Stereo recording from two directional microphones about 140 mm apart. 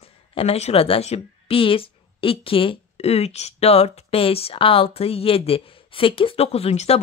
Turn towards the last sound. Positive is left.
turn(degrees=50)  # may be behind; listen again after turning